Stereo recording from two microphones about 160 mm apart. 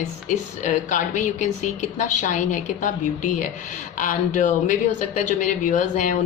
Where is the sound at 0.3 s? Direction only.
50° left (ahead or behind).